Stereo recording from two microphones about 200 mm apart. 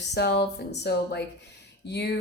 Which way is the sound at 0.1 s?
55° left (ahead or behind).